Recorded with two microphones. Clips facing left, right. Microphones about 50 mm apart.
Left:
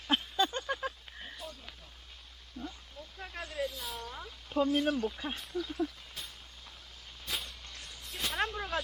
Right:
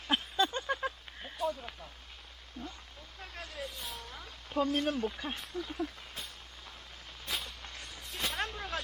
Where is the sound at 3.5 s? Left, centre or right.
Centre.